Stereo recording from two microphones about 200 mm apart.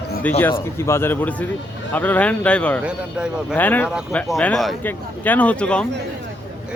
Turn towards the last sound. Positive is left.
turn(degrees=5)  # may be behind; listen again after turning